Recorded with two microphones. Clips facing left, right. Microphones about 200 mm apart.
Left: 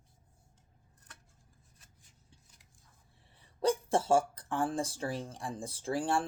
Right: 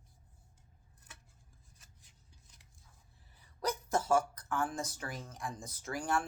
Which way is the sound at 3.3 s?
30° left (ahead or behind).